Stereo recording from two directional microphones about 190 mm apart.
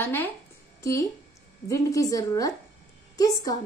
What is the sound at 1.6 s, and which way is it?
A woman's voice, 15° left (ahead or behind).